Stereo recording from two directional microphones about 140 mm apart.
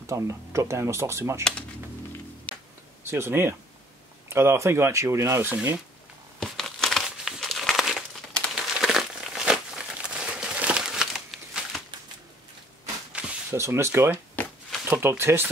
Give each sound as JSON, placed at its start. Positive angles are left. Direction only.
{"t": 0.0, "sound": "speech", "side_deg": -20}
{"t": 3.0, "sound": "speech", "side_deg": -15}
{"t": 6.4, "sound": "crumpling", "side_deg": 5}
{"t": 13.1, "sound": "a sound", "side_deg": -10}
{"t": 13.6, "sound": "speech", "side_deg": -20}
{"t": 14.3, "sound": "a sound", "side_deg": 10}
{"t": 14.9, "sound": "speech", "side_deg": -15}